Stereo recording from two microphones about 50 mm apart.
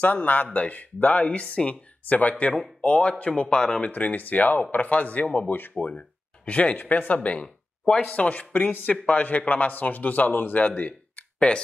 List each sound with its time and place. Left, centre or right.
0.0 s speech: left; by 3.8 s centre
3.8 s speech: left
5.5 s speech: left
5.9 s speech: left
7.4 s a sound: centre
8.1 s speech: left
10.7 s a sound: left